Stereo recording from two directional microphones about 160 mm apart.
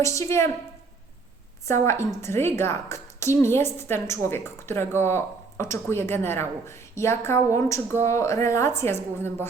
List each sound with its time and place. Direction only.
0.0 s a woman's voice: 20° left (ahead or behind)
1.6 s a woman's voice: 15° left (ahead or behind)